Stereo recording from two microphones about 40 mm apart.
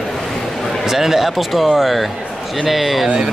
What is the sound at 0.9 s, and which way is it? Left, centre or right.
A man's voice, centre.